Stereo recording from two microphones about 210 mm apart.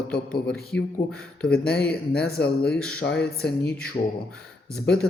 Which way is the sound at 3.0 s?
55° left (ahead or behind).